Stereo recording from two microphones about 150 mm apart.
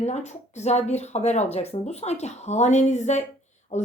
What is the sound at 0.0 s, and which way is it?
A woman's voice, 50° left (ahead or behind).